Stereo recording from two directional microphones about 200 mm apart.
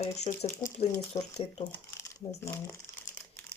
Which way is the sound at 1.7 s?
15° left (ahead or behind).